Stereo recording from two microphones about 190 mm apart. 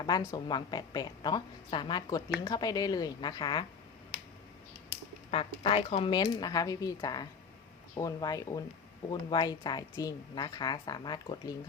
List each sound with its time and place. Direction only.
0.3 s a woman's voice: 25° left (ahead or behind)
5.3 s a woman's voice: 30° left (ahead or behind)